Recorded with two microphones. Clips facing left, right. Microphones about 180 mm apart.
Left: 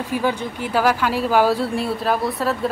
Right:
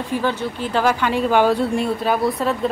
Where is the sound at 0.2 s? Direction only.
10° left (ahead or behind).